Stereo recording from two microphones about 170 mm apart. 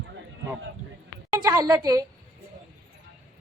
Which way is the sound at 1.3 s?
20° right (ahead or behind).